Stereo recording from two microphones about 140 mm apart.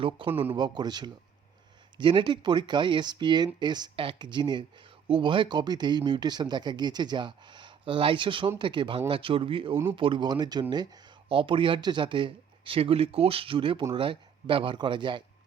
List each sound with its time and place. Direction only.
0.3 s a man's voice: 15° right (ahead or behind)
0.5 s speech: 30° right (ahead or behind)